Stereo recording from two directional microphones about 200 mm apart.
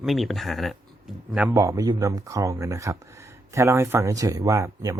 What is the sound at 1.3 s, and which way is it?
Speech, 10° right (ahead or behind).